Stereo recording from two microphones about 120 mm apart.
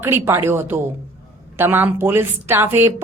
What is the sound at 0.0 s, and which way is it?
A woman's voice, 20° right (ahead or behind).